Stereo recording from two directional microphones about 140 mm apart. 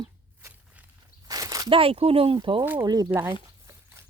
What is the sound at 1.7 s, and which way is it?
Speech, 45° right (ahead or behind).